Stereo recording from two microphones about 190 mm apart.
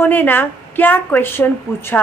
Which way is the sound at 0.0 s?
10° left (ahead or behind).